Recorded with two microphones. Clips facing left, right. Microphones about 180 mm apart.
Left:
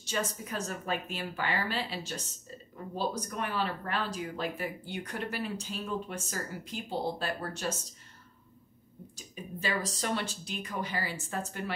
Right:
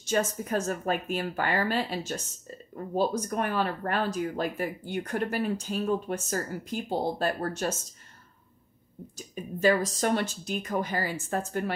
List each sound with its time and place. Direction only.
0.0 s speech: 45° right (ahead or behind)
9.3 s speech: 45° right (ahead or behind)